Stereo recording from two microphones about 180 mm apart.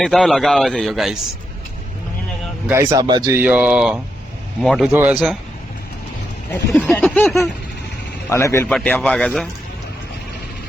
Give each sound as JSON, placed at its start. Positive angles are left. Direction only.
{"t": 0.0, "sound": "a man's voice", "side_deg": 0}
{"t": 2.6, "sound": "speech", "side_deg": -15}
{"t": 3.4, "sound": "a man's voice", "side_deg": -10}
{"t": 6.5, "sound": "speech", "side_deg": 10}
{"t": 8.3, "sound": "a man's voice", "side_deg": 15}